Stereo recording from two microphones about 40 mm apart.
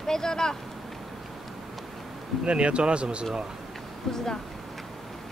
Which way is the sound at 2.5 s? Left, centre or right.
Right.